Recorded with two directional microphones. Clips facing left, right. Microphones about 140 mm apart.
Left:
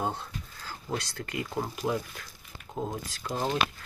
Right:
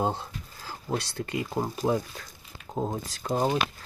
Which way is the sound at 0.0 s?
25° right (ahead or behind).